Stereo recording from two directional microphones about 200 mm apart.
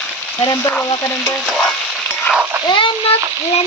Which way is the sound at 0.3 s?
15° left (ahead or behind).